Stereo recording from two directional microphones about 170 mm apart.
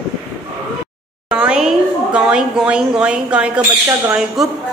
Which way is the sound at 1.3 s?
5° right (ahead or behind).